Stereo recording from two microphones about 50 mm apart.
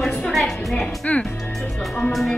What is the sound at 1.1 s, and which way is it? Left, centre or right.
Speech, left.